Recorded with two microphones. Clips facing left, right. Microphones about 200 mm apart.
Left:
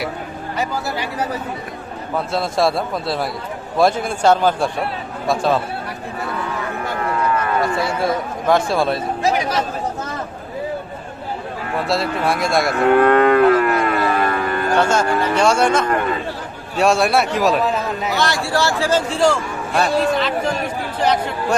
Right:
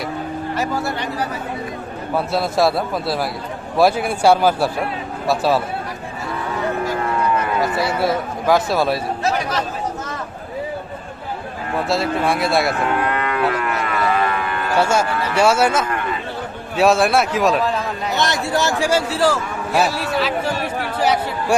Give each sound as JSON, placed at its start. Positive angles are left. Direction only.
{"t": 0.5, "sound": "a man's voice", "side_deg": 0}
{"t": 2.3, "sound": "a man's voice", "side_deg": -5}
{"t": 7.6, "sound": "a man's voice", "side_deg": -5}
{"t": 9.2, "sound": "speech", "side_deg": 10}
{"t": 11.9, "sound": "a man's voice", "side_deg": 0}
{"t": 13.0, "sound": "livestock", "side_deg": 55}
{"t": 13.9, "sound": "cattle", "side_deg": 40}
{"t": 14.8, "sound": "a man's voice", "side_deg": -10}
{"t": 18.2, "sound": "a man's voice", "side_deg": -20}